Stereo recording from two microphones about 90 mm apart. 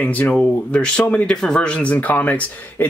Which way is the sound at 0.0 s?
15° left (ahead or behind).